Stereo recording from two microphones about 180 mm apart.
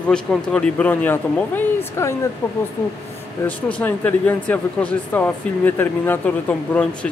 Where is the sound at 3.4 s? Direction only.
10° left (ahead or behind).